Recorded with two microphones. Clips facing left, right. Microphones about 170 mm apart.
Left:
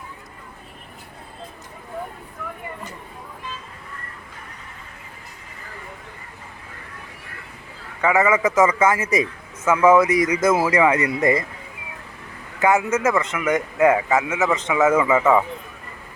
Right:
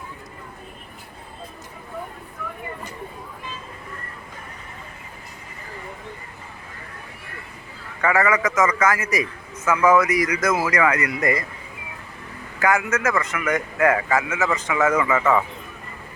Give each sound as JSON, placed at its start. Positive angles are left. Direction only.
{"t": 8.0, "sound": "a man's voice", "side_deg": 20}
{"t": 12.5, "sound": "a man's voice", "side_deg": 25}
{"t": 15.1, "sound": "speech", "side_deg": 10}